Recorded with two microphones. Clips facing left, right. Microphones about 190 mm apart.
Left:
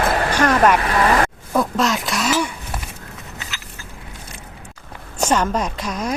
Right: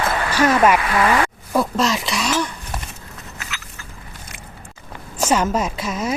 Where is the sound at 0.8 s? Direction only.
40° left (ahead or behind).